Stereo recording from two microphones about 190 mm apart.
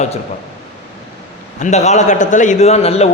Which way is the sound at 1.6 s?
35° left (ahead or behind).